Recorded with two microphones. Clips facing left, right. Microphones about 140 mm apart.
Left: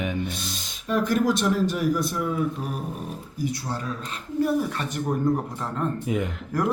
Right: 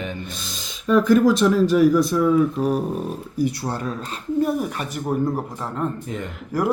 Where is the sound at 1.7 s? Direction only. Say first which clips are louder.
Right 9 dB; 90° right.